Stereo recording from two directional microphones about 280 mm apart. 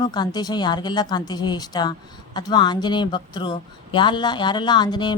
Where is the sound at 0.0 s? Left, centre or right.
Centre.